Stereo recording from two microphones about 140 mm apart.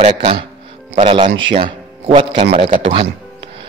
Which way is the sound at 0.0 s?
50° right (ahead or behind).